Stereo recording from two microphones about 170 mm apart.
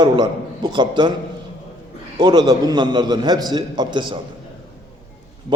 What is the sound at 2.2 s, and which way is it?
A man's voice, 25° right (ahead or behind).